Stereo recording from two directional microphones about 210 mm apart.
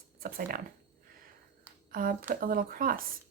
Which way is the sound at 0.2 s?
45° right (ahead or behind).